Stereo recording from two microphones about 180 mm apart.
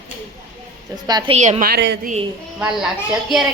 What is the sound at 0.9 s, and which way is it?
Speech, 25° right (ahead or behind).